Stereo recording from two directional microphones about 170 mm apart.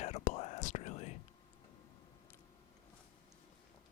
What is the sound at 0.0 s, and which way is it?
Whispering, 40° left (ahead or behind).